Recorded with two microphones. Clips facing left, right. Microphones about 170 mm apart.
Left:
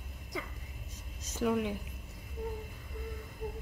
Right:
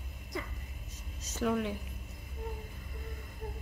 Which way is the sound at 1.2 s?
10° left (ahead or behind).